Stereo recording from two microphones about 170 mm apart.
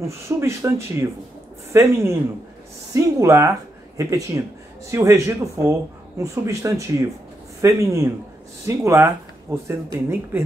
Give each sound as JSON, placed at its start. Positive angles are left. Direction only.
{"t": 0.0, "sound": "speech", "side_deg": -15}